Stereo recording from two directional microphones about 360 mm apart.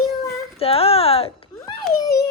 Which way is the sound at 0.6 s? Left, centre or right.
Centre.